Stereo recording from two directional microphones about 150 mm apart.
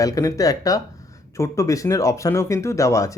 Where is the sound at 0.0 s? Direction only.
20° left (ahead or behind).